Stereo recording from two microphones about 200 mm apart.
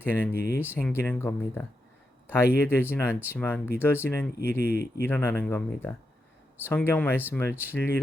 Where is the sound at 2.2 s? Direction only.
10° left (ahead or behind).